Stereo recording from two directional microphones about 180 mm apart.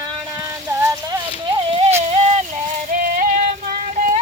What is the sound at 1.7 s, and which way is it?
Music, 30° right (ahead or behind).